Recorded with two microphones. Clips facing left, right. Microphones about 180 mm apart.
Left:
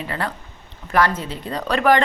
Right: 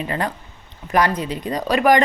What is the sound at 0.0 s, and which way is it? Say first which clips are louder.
A woman's voice: right 3 dB; 20° right (ahead or behind).